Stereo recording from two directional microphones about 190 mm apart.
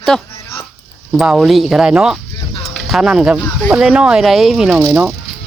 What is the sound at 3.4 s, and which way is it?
Speech, centre (ahead or behind).